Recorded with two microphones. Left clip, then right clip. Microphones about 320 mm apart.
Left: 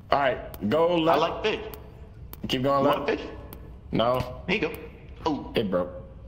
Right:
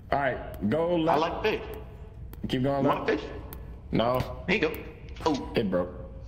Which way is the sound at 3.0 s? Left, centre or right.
Centre.